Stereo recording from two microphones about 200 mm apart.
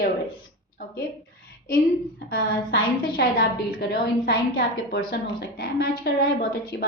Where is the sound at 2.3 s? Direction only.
45° left (ahead or behind).